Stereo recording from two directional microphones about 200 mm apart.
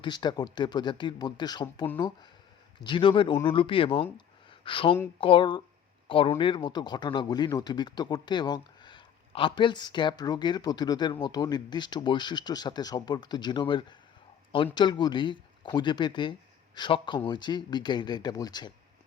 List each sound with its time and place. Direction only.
0.0 s speech: 20° left (ahead or behind)